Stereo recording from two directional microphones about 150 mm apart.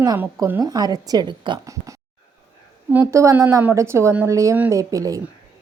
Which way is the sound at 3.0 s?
20° right (ahead or behind).